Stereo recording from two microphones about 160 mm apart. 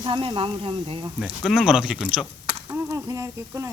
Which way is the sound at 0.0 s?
35° right (ahead or behind).